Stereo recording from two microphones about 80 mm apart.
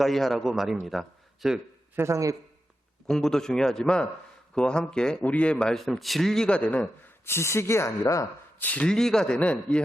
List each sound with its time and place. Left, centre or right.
0.0 s a man's voice: centre
2.0 s a man's voice: right
3.1 s speech: centre
7.3 s speech: left
8.5 s speech: centre
8.9 s speech: centre